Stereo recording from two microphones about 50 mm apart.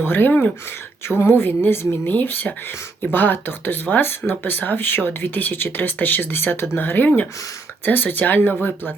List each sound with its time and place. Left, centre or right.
0.0 s speech: left